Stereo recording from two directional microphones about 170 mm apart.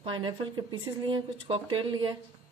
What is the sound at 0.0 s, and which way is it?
Speech, 30° right (ahead or behind).